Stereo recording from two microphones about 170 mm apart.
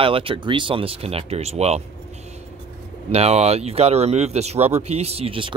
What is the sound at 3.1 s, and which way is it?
Speech, 40° right (ahead or behind).